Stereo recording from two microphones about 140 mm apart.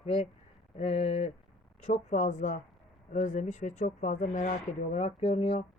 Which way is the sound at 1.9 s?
60° left (ahead or behind).